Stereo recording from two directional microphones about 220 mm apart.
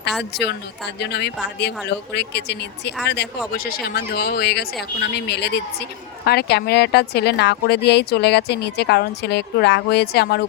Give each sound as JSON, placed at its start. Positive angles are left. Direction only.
{"t": 0.3, "sound": "speech", "side_deg": 50}